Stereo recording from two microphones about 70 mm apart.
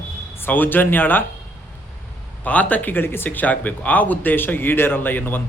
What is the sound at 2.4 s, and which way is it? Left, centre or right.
Speech, left.